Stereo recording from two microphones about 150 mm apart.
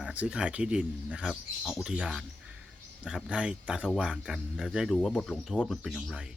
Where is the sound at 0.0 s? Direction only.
10° right (ahead or behind).